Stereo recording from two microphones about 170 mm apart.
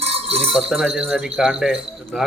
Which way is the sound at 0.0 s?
40° right (ahead or behind).